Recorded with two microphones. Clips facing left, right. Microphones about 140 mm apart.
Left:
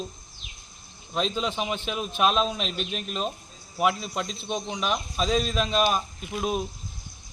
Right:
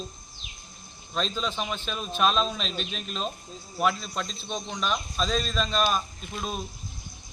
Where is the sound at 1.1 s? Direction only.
15° left (ahead or behind).